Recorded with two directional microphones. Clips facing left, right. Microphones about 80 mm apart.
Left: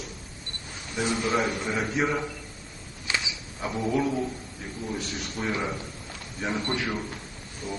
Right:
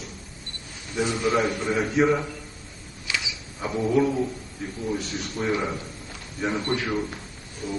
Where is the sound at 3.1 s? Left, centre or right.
Left.